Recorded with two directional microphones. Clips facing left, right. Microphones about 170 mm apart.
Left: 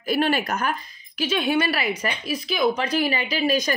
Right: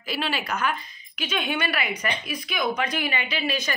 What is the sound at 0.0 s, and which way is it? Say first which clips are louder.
A woman's voice: left 7 dB; 45° left (ahead or behind).